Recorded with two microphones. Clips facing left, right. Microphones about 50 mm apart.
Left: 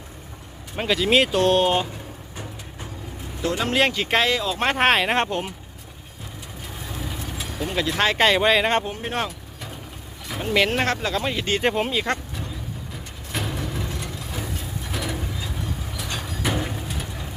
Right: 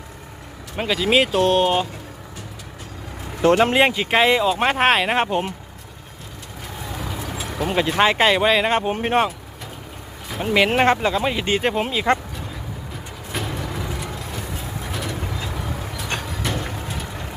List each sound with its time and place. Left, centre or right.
0.8 s speech: centre
3.4 s speech: right
3.7 s speech: centre
4.3 s speech: right
4.6 s speech: centre
7.8 s speech: right; by 8.8 s centre
8.9 s speech: right
10.4 s speech: centre
13.3 s vehicle: centre
15.2 s vehicle: right
16.2 s vehicle: centre